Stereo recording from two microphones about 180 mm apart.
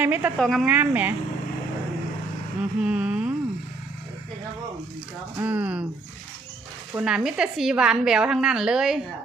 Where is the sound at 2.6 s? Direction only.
5° right (ahead or behind).